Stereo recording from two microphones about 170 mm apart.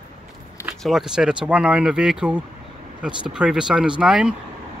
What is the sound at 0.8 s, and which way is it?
Speech, 5° right (ahead or behind).